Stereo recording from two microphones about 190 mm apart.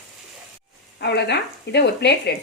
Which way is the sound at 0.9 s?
60° left (ahead or behind).